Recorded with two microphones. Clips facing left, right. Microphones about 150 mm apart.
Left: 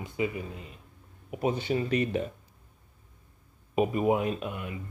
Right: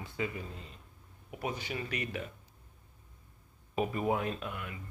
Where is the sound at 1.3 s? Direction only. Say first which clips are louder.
Left 9 dB; 25° left (ahead or behind).